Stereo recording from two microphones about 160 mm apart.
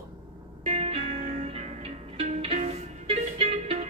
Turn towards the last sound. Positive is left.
turn(degrees=-40)  # may be behind; listen again after turning